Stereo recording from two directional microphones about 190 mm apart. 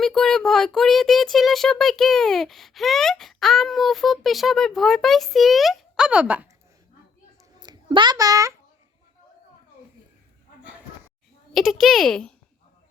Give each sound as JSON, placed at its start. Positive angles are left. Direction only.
{"t": 0.0, "sound": "speech", "side_deg": 0}
{"t": 7.6, "sound": "a child's voice", "side_deg": -25}
{"t": 11.5, "sound": "speech", "side_deg": 0}